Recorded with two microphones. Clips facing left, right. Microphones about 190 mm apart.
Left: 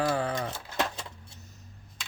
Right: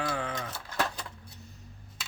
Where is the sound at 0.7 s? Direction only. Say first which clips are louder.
Even; 25° left (ahead or behind).